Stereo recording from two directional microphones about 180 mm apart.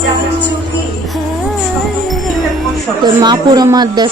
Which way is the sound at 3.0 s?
25° right (ahead or behind).